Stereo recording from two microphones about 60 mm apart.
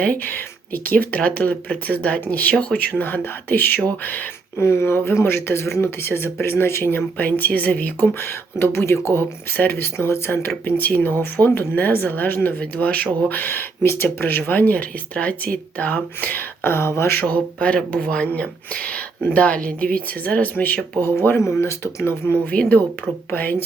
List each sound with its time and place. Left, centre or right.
0.0 s speech: left
4.5 s speech: left
7.2 s speech: left
8.2 s speech: left
17.2 s speech: left
21.0 s speech: left
23.3 s speech: left